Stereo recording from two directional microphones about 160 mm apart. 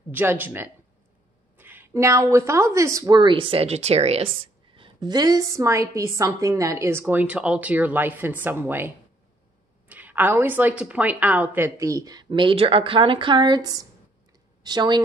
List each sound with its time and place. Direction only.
0.1 s speech: 10° right (ahead or behind)